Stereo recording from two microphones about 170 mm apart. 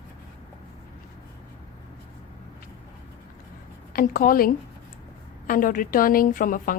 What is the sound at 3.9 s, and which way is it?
A woman's voice, 55° left (ahead or behind).